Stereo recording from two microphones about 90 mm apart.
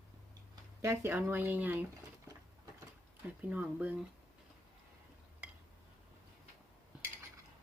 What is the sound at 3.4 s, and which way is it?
Speech, 15° right (ahead or behind).